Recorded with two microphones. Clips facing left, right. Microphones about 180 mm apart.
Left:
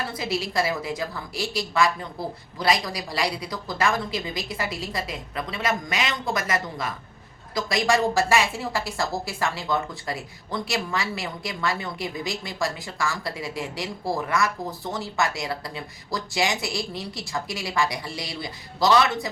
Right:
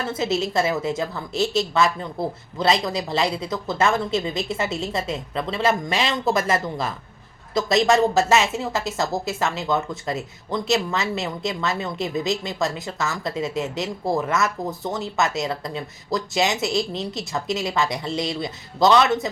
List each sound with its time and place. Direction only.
0.1 s a woman's voice: 25° right (ahead or behind)